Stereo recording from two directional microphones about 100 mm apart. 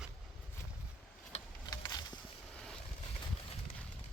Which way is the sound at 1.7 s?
40° left (ahead or behind).